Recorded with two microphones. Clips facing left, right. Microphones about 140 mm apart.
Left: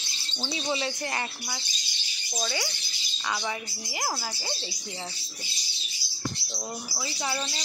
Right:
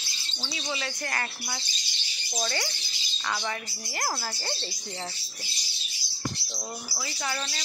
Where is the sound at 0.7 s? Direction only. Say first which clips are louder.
Left 3 dB; 20° left (ahead or behind).